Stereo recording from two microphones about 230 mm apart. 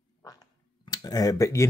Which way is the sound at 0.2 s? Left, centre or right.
Centre.